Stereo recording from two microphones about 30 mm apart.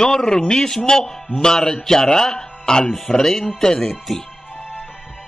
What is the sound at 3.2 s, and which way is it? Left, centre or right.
Speech, centre.